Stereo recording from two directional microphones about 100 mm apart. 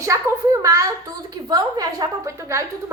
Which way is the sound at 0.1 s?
35° right (ahead or behind).